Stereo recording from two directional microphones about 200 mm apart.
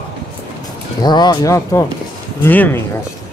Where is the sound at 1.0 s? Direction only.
20° left (ahead or behind).